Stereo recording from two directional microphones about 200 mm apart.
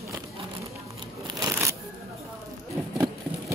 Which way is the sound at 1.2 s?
15° right (ahead or behind).